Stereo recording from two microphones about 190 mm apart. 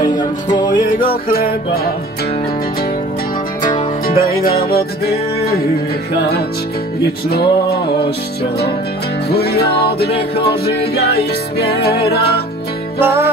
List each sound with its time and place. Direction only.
0.9 s music: 50° left (ahead or behind)
3.6 s music: 45° left (ahead or behind)
7.2 s music: 55° left (ahead or behind)
9.3 s music: 55° left (ahead or behind)
13.0 s music: 10° right (ahead or behind)